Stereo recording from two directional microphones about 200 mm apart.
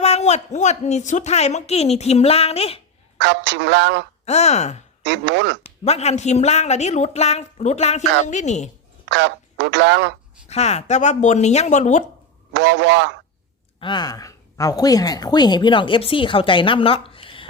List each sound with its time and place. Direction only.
0.0 s speech: 35° left (ahead or behind)
3.2 s speech: 60° right (ahead or behind)
4.3 s speech: 35° left (ahead or behind)
5.0 s speech: 60° right (ahead or behind)
5.6 s speech: 30° left (ahead or behind)
9.0 s speech: 65° right (ahead or behind)
10.5 s speech: 35° left (ahead or behind)
12.5 s speech: 60° right (ahead or behind)
13.7 s a woman's voice: 25° left (ahead or behind)